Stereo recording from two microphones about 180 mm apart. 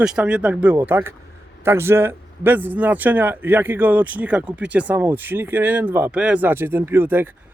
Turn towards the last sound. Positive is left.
turn(degrees=-10)  # may be behind; listen again after turning